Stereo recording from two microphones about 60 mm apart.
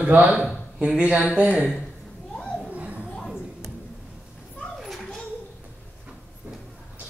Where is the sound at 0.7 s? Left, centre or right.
Centre.